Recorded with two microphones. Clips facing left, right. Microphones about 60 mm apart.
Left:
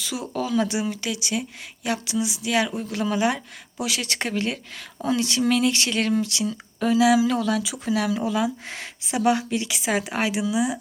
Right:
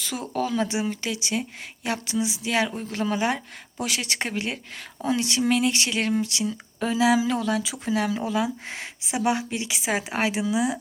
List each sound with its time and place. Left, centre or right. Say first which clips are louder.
0.0 s speech: even; right